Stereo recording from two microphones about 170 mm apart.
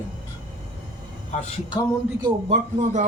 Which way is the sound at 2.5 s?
45° right (ahead or behind).